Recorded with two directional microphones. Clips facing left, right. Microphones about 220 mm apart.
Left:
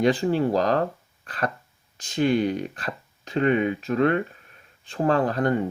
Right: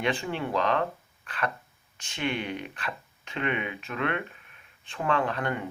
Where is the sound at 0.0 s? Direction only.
35° left (ahead or behind).